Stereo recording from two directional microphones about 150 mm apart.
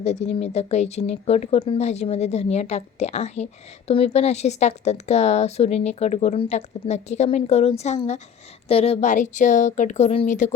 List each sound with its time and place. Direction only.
0.0 s speech: 45° left (ahead or behind)